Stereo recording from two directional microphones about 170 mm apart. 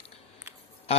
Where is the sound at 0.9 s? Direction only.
35° left (ahead or behind).